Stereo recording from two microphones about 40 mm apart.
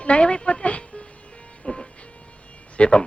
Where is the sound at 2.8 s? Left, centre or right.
Left.